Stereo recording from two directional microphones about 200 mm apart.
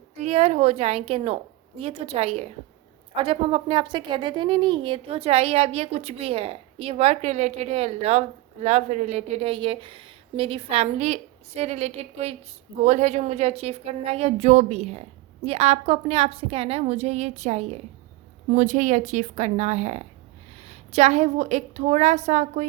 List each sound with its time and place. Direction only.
0.2 s a woman's voice: 30° right (ahead or behind)